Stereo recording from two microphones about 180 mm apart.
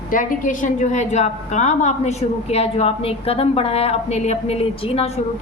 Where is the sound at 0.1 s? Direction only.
50° left (ahead or behind).